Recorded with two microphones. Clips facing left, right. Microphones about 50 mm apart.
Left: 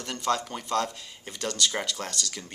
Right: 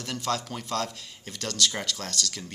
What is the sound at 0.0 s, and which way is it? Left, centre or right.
Speech, centre.